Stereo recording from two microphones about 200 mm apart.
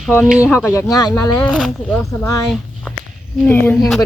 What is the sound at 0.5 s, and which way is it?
Speech, 10° left (ahead or behind).